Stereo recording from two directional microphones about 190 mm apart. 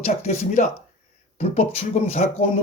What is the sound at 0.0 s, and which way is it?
Speech, 35° left (ahead or behind).